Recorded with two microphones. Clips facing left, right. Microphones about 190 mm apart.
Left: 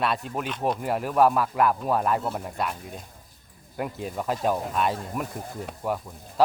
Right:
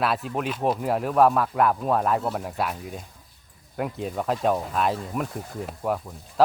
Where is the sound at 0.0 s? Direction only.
Centre (ahead or behind).